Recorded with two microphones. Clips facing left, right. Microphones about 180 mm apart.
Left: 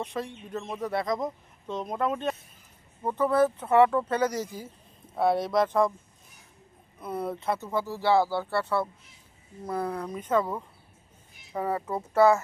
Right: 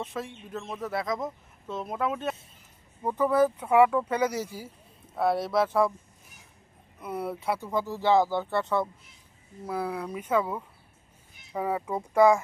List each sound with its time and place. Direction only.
0.0 s speech: centre (ahead or behind)
7.0 s speech: 10° right (ahead or behind)
9.6 s speech: 5° right (ahead or behind)